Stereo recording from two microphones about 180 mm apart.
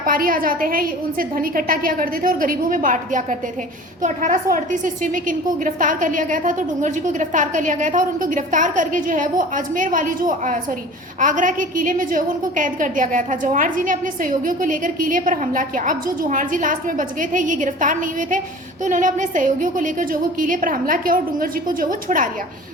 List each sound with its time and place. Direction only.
0.0 s a woman's voice: 50° right (ahead or behind)